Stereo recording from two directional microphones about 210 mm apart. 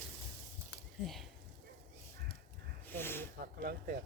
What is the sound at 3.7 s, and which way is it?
Speech, 45° right (ahead or behind).